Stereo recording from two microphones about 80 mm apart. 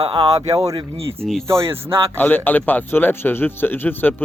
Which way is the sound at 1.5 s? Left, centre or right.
Right.